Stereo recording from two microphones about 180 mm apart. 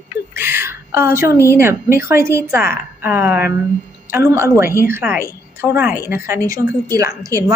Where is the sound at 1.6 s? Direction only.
15° right (ahead or behind).